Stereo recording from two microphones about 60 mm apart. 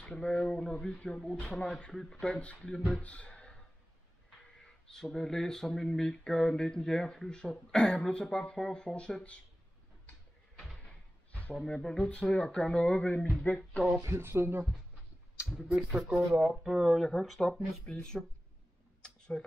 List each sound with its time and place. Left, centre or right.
0.0 s speech: centre
3.0 s a sound: left
5.1 s speech: centre
10.8 s a sound: left
11.5 s speech: centre; by 13.8 s left
14.0 s speech: right
15.5 s speech: centre
16.0 s speech: centre
17.8 s speech: centre
19.0 s a sound: centre